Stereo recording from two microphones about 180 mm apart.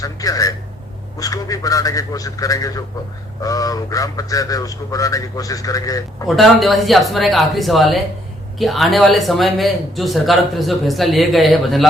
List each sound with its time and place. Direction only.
0.0 s speech: 20° left (ahead or behind)
6.2 s speech: centre (ahead or behind)